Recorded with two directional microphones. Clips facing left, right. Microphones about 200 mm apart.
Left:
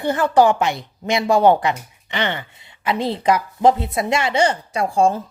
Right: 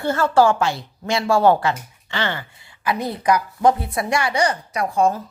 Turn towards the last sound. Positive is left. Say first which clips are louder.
# left 2 dB
turn(degrees=30)  # may be behind; listen again after turning